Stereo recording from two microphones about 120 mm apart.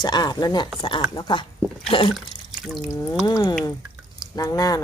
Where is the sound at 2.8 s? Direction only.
25° left (ahead or behind).